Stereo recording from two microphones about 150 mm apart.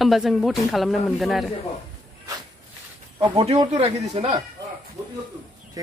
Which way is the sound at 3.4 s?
45° right (ahead or behind).